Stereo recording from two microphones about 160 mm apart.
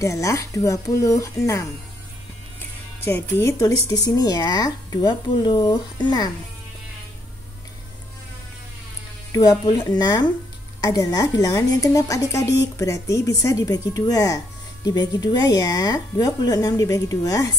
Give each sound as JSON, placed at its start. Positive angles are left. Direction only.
{"t": 0.0, "sound": "a woman's voice", "side_deg": 20}
{"t": 3.0, "sound": "a woman's voice", "side_deg": 15}
{"t": 9.3, "sound": "a woman's voice", "side_deg": 25}